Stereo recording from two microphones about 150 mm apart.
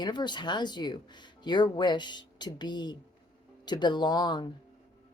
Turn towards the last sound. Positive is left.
turn(degrees=30)  # may be behind; listen again after turning